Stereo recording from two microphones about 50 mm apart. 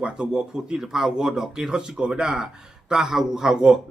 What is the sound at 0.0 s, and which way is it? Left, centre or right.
Speech, centre.